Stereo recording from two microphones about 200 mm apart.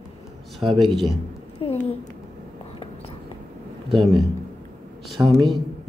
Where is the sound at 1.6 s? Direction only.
25° left (ahead or behind).